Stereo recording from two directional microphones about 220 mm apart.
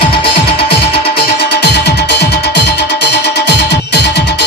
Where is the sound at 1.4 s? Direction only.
50° left (ahead or behind).